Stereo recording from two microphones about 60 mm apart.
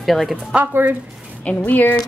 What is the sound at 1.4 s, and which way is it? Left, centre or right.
Speech, left.